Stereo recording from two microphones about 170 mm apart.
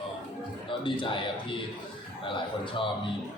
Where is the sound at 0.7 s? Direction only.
30° left (ahead or behind).